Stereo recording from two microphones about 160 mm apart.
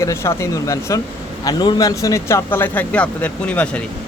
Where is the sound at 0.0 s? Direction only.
15° left (ahead or behind).